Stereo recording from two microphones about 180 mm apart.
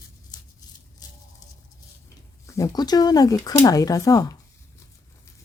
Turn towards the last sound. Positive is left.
turn(degrees=20)  # may be behind; listen again after turning